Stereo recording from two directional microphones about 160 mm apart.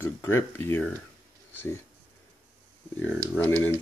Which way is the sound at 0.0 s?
15° left (ahead or behind).